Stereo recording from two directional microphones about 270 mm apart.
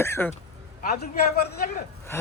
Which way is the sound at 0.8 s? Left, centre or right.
Left.